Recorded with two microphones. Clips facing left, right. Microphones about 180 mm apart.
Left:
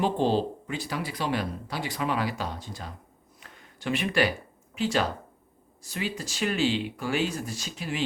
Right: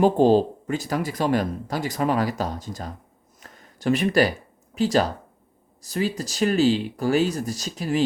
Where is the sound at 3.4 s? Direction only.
40° right (ahead or behind).